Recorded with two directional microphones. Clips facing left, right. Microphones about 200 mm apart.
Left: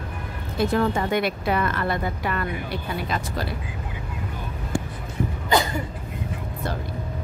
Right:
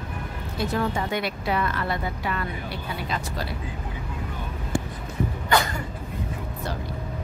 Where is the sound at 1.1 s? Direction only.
50° left (ahead or behind).